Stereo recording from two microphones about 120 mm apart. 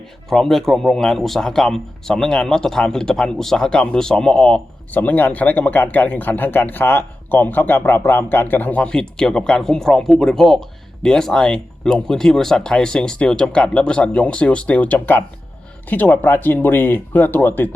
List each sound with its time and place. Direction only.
0.3 s speech: centre (ahead or behind)